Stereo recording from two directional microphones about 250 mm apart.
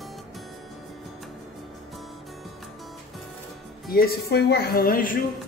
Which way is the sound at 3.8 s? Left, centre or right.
Left.